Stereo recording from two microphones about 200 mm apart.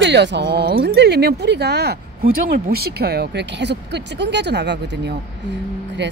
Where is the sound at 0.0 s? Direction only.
60° right (ahead or behind).